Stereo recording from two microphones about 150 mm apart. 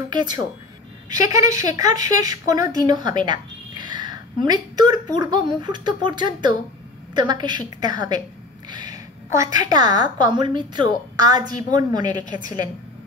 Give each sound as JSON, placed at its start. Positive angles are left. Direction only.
{"t": 0.1, "sound": "speech", "side_deg": -30}
{"t": 8.9, "sound": "a sound", "side_deg": -20}
{"t": 9.7, "sound": "speech", "side_deg": -25}
{"t": 12.3, "sound": "a woman's voice", "side_deg": 60}